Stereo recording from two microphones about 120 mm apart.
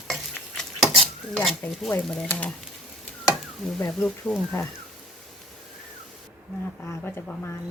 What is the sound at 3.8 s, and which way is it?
Speech, 20° left (ahead or behind).